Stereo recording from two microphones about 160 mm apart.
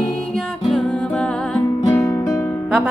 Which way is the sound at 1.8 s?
15° left (ahead or behind).